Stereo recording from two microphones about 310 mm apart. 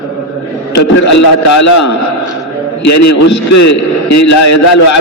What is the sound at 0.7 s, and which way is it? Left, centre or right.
A man's voice, left.